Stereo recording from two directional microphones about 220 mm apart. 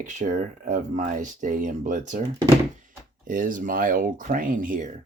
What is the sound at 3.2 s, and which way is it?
Speech, 40° right (ahead or behind).